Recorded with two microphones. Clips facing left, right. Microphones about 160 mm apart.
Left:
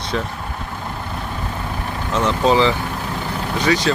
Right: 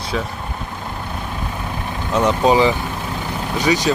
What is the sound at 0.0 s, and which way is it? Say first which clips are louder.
Vehicle: even; 5° right (ahead or behind).